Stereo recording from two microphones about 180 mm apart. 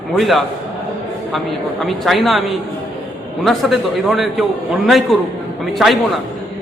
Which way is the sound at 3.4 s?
Centre (ahead or behind).